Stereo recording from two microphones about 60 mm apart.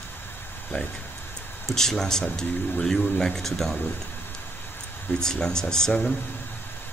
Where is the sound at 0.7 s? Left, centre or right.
Left.